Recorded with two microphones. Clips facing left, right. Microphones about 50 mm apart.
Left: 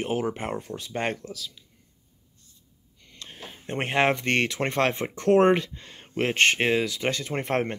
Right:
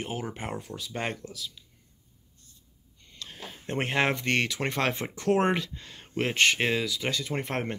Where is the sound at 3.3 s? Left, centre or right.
Left.